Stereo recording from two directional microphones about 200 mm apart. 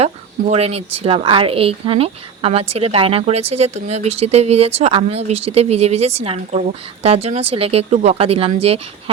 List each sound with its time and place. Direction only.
0.5 s speech: 30° right (ahead or behind)